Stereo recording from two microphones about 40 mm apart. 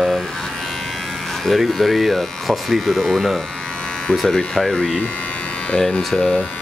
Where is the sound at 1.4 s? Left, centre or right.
Centre.